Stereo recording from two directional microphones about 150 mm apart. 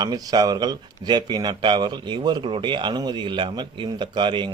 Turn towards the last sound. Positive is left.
turn(degrees=-30)  # may be behind; listen again after turning